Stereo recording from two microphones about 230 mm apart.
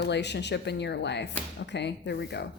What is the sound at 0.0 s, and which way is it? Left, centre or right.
A woman's voice, left.